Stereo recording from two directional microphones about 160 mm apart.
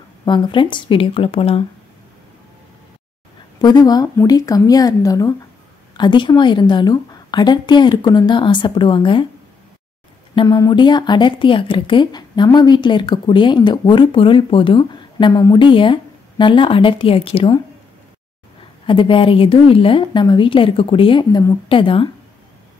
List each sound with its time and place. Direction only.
0.2 s a woman's voice: 30° left (ahead or behind)
3.6 s a woman's voice: 25° left (ahead or behind)
10.3 s a woman's voice: 25° left (ahead or behind)
18.9 s a woman's voice: 30° left (ahead or behind)